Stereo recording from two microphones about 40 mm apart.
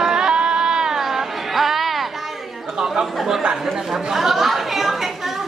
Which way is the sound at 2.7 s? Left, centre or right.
Centre.